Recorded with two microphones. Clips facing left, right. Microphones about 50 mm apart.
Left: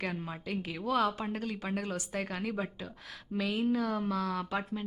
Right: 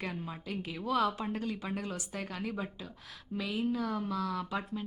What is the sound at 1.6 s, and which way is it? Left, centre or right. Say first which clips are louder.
Speech: left 2 dB; left.